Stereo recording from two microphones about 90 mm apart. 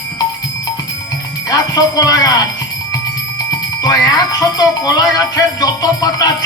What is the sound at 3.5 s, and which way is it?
Music, 40° left (ahead or behind).